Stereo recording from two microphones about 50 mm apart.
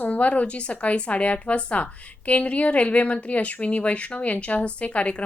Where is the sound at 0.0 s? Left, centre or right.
Left.